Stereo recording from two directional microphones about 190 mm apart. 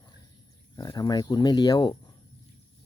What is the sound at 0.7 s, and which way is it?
Speech, 20° left (ahead or behind).